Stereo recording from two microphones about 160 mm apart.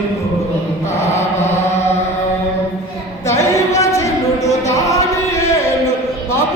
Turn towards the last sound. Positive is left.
turn(degrees=20)  # may be behind; listen again after turning